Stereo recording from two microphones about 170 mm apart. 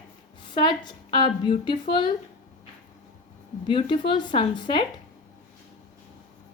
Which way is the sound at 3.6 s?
30° left (ahead or behind).